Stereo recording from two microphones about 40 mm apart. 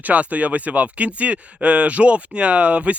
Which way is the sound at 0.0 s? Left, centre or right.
Right.